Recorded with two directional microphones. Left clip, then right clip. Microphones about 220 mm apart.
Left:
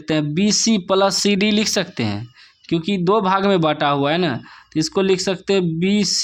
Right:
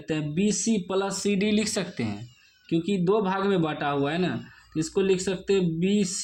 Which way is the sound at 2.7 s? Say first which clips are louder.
Left 6 dB; 40° left (ahead or behind).